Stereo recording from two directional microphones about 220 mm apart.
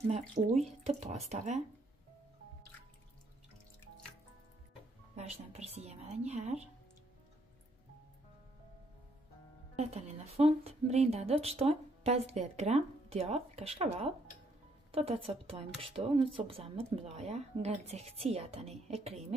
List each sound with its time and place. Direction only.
0.4 s speech: 35° right (ahead or behind)
5.1 s a woman's voice: 30° right (ahead or behind)
9.8 s a woman's voice: 30° right (ahead or behind)